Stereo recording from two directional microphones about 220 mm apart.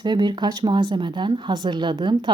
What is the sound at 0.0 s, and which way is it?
Speech, 20° right (ahead or behind).